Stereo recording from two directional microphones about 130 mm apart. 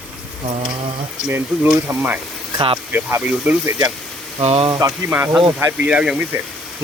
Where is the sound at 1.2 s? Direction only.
15° right (ahead or behind).